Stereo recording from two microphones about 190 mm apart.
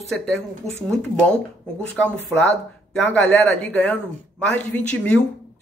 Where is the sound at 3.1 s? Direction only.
10° left (ahead or behind).